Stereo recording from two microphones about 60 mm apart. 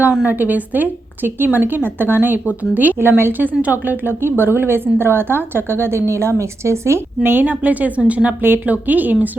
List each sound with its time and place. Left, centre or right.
0.3 s speech: right
7.2 s a woman's voice: right
8.4 s a woman's voice: right